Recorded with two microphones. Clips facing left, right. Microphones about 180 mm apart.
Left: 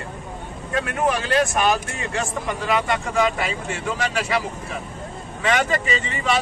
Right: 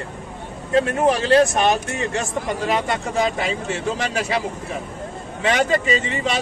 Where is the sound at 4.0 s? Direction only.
25° right (ahead or behind).